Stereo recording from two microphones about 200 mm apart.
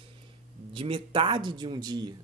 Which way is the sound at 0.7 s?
25° right (ahead or behind).